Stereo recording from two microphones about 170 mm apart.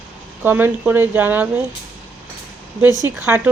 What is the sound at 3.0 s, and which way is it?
Speech, 15° right (ahead or behind).